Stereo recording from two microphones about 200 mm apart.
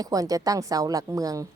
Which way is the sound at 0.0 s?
20° right (ahead or behind).